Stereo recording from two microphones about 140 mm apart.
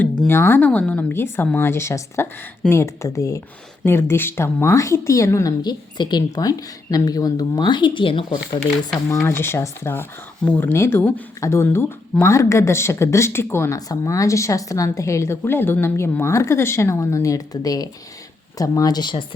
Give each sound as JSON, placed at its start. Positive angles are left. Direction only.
{"t": 0.3, "sound": "speech", "side_deg": 15}
{"t": 9.0, "sound": "speech", "side_deg": 20}